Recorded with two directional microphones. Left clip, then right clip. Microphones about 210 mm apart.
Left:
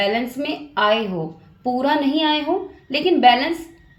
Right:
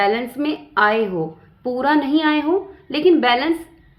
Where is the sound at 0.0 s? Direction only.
45° right (ahead or behind).